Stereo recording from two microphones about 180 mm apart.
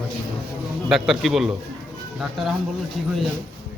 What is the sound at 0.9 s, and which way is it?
A man's voice, centre (ahead or behind).